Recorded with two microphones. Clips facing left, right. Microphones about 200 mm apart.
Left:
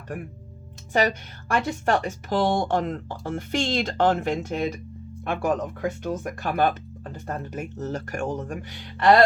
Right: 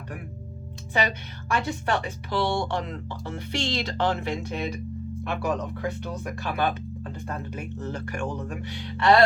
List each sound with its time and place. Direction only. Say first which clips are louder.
0.9 s speech: left 4 dB; 45° left (ahead or behind)